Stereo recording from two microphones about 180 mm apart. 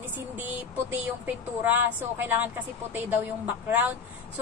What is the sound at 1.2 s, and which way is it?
A woman's voice, 10° right (ahead or behind).